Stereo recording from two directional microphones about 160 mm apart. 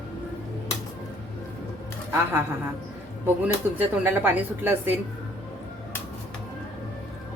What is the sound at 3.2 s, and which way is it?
Speech, 10° right (ahead or behind).